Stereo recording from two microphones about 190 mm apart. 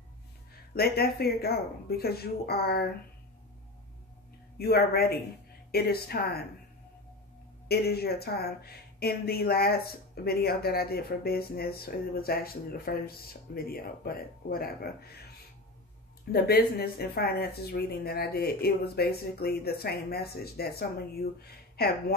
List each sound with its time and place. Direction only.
0.7 s speech: 55° left (ahead or behind)
4.6 s speech: 55° left (ahead or behind)
7.6 s speech: 55° left (ahead or behind)
16.3 s speech: 55° left (ahead or behind)